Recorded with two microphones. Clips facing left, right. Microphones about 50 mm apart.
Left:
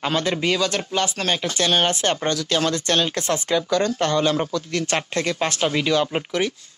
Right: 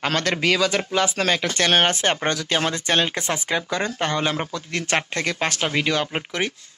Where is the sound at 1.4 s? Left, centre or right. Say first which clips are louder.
Even; right.